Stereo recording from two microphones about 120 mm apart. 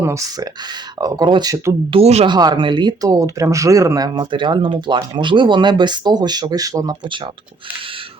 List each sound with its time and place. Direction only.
0.0 s speech: 25° right (ahead or behind)
1.9 s speech: 60° right (ahead or behind)
2.2 s speech: 40° right (ahead or behind)